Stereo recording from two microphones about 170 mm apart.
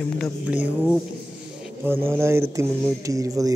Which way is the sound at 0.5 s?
5° right (ahead or behind).